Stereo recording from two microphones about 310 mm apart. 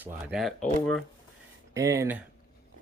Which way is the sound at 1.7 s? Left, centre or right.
Centre.